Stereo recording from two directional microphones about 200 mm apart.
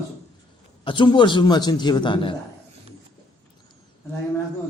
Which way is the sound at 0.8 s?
25° left (ahead or behind).